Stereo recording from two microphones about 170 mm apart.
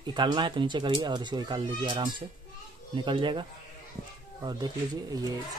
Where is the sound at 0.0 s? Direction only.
25° right (ahead or behind).